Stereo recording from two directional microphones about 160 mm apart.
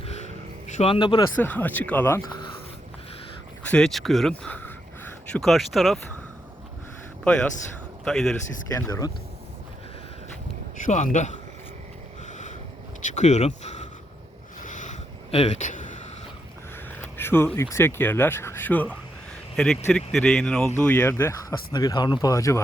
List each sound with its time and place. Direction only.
0.8 s speech: 30° left (ahead or behind)
1.4 s speech: 10° left (ahead or behind)
3.7 s speech: 5° left (ahead or behind)
8.0 s speech: centre (ahead or behind)
8.7 s speech: 20° left (ahead or behind)
10.8 s speech: 50° left (ahead or behind)
13.0 s a sound: 50° left (ahead or behind)
17.0 s speech: 15° left (ahead or behind)